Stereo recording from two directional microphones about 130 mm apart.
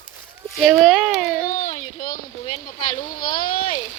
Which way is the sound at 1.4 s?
90° left.